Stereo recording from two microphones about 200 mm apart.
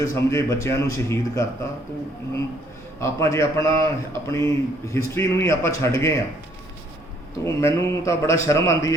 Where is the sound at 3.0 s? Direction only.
15° left (ahead or behind).